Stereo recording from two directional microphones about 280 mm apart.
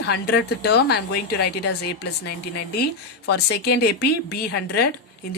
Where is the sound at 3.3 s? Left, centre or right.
Left.